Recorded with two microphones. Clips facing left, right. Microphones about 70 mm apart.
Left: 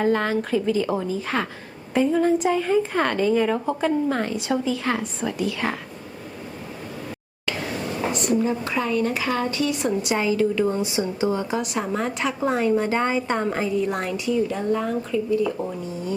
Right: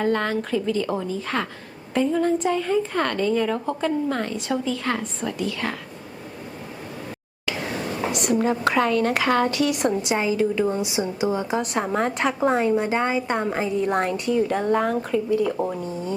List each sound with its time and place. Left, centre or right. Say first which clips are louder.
0.0 s a woman's voice: left 1 dB; centre
8.1 s a woman's voice: right 1 dB; right
10.0 s a woman's voice: even; centre
11.6 s a woman's voice: right 2 dB; right
12.5 s a woman's voice: left 1 dB; right
13.7 s a woman's voice: right 2 dB; right